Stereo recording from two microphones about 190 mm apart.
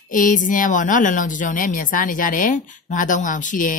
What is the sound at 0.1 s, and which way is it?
A woman's voice, 45° left (ahead or behind).